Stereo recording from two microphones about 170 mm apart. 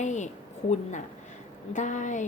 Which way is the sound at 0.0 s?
45° left (ahead or behind).